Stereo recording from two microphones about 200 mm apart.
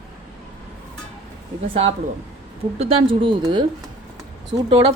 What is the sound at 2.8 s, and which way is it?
A man's voice, 25° right (ahead or behind).